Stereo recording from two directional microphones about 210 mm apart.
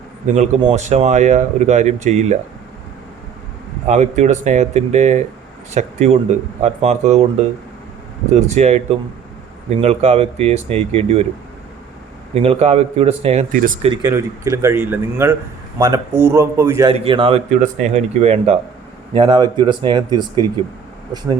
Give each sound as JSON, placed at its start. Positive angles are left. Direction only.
{"t": 0.6, "sound": "speech", "side_deg": -30}
{"t": 3.8, "sound": "speech", "side_deg": -35}
{"t": 12.3, "sound": "speech", "side_deg": -30}
{"t": 13.5, "sound": "speech", "side_deg": -40}
{"t": 13.8, "sound": "speech", "side_deg": -20}
{"t": 16.9, "sound": "speech", "side_deg": -25}